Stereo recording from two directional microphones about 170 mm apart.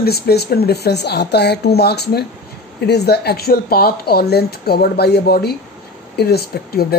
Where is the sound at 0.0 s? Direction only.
70° left (ahead or behind).